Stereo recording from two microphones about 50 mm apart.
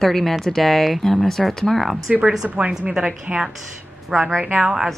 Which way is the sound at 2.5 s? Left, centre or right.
Right.